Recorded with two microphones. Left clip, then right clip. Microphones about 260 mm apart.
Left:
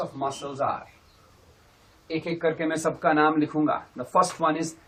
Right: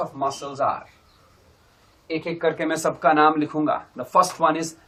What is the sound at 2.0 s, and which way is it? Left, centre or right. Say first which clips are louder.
A man's voice: right 3 dB; right.